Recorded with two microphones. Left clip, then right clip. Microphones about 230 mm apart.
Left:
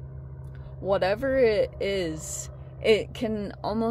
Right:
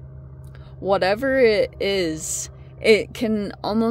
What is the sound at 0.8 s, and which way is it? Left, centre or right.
Speech, right.